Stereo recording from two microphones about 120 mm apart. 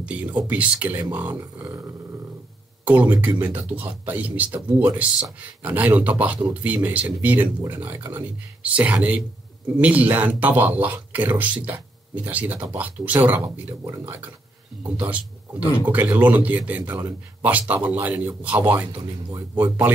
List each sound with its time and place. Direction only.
0.0 s speech: 10° right (ahead or behind)
2.8 s speech: 15° right (ahead or behind)
14.8 s speech: 15° right (ahead or behind)